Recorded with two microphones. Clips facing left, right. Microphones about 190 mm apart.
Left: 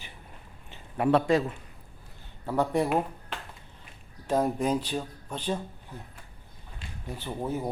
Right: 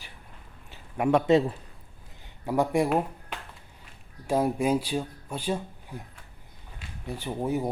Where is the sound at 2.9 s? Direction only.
5° right (ahead or behind).